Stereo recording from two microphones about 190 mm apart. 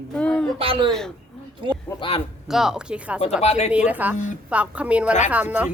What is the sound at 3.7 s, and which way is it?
Speech, 10° right (ahead or behind).